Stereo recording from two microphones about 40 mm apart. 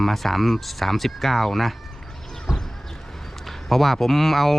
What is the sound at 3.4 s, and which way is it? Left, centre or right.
Speech, centre.